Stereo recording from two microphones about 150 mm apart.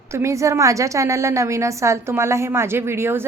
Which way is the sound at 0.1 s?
20° right (ahead or behind).